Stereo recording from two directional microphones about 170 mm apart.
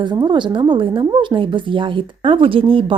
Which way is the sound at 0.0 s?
25° right (ahead or behind).